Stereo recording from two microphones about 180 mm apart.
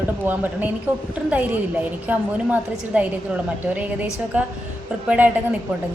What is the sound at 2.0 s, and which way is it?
A woman's voice, 10° right (ahead or behind).